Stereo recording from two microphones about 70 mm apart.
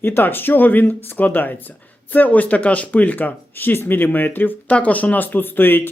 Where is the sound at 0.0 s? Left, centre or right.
Left.